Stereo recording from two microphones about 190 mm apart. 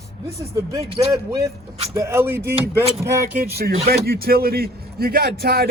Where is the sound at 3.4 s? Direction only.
55° right (ahead or behind).